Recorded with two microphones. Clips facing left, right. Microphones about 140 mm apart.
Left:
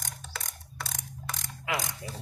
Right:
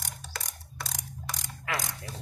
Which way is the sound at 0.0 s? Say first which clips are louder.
Even; 5° right (ahead or behind).